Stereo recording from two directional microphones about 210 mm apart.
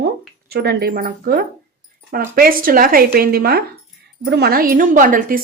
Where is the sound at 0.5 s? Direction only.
50° right (ahead or behind).